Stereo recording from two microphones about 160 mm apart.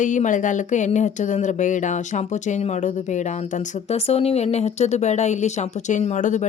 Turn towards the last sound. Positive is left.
turn(degrees=50)  # may be behind; listen again after turning